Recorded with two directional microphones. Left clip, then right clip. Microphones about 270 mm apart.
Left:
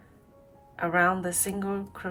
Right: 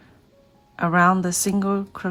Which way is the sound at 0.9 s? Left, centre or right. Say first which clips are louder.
Right 6 dB; centre.